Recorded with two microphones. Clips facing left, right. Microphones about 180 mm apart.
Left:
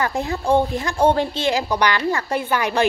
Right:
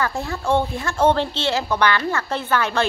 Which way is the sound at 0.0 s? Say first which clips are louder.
Left 2 dB; 20° left (ahead or behind).